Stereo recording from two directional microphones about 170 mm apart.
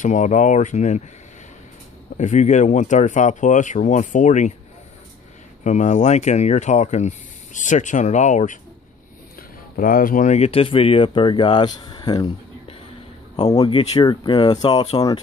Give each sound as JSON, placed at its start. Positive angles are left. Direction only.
{"t": 0.0, "sound": "speech", "side_deg": 45}
{"t": 2.1, "sound": "speech", "side_deg": 45}
{"t": 5.6, "sound": "speech", "side_deg": 45}
{"t": 9.8, "sound": "speech", "side_deg": 55}